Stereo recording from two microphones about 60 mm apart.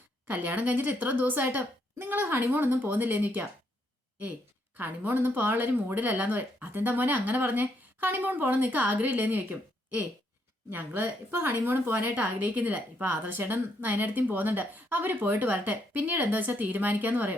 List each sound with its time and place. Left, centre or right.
0.3 s a woman's voice: right
4.8 s a woman's voice: right